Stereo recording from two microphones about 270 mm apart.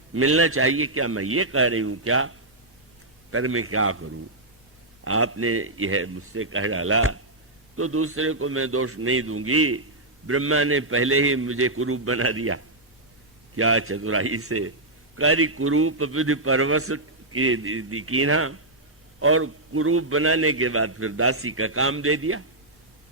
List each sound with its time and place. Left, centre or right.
0.1 s a man's voice: right
3.3 s a man's voice: right